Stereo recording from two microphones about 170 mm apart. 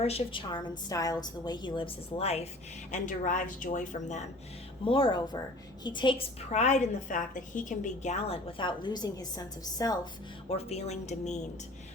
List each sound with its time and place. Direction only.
0.0 s a woman's voice: 35° left (ahead or behind)
2.9 s speech: 50° left (ahead or behind)
4.9 s a woman's voice: 30° left (ahead or behind)
6.5 s a woman's voice: 40° left (ahead or behind); by 10.0 s 20° left (ahead or behind)
10.5 s a woman's voice: 35° left (ahead or behind)